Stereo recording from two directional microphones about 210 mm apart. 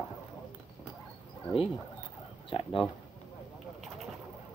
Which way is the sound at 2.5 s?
25° left (ahead or behind).